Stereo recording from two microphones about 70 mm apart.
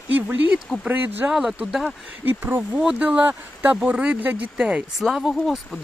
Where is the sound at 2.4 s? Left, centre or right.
Right.